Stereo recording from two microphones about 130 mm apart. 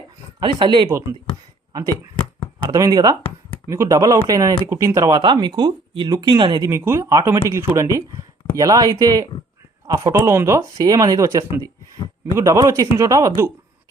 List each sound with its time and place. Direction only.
0.3 s speech: 35° right (ahead or behind)
1.7 s speech: 25° right (ahead or behind)
6.7 s speech: 20° right (ahead or behind)